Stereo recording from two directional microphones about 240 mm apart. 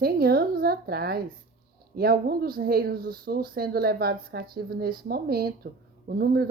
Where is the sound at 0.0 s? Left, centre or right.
Right.